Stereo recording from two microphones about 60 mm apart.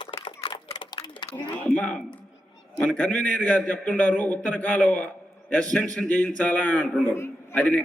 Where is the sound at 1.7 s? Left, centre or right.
Left.